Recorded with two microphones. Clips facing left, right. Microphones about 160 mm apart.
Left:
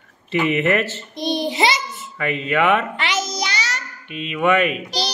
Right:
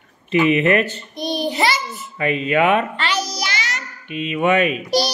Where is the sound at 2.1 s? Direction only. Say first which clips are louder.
Right 2 dB; 20° right (ahead or behind).